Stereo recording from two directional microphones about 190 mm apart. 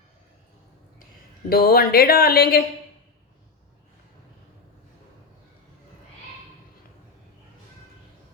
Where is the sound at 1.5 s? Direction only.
50° left (ahead or behind).